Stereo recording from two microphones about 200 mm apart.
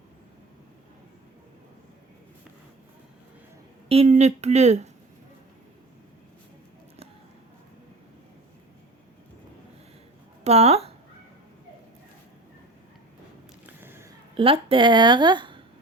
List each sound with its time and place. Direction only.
3.8 s speech: 30° right (ahead or behind)
10.4 s speech: 30° right (ahead or behind)
13.7 s a sound: 10° right (ahead or behind)
14.3 s a woman's voice: 25° right (ahead or behind)